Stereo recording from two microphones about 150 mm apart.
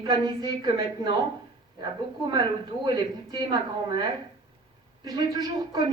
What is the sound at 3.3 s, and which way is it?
Speech, 30° right (ahead or behind).